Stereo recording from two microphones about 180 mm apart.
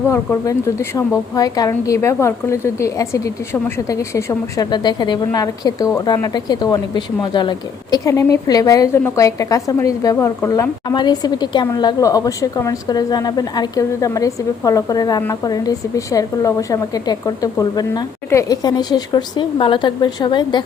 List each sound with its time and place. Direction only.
0.1 s a woman's voice: 15° left (ahead or behind)